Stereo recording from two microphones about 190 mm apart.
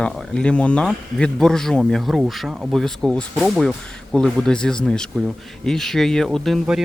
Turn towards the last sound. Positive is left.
turn(degrees=0)  # may be behind; listen again after turning